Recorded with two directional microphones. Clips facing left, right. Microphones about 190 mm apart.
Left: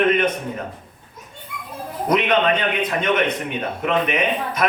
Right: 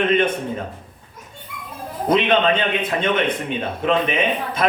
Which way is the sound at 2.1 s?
30° right (ahead or behind).